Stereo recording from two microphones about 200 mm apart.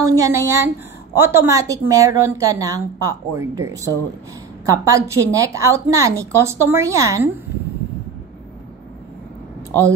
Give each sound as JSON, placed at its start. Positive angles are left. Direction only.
{"t": 0.0, "sound": "a woman's voice", "side_deg": -15}